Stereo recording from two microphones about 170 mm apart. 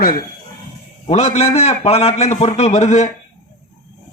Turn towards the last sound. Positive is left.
turn(degrees=40)  # may be behind; listen again after turning